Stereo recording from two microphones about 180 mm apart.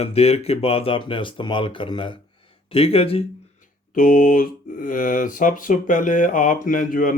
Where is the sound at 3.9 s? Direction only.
50° left (ahead or behind).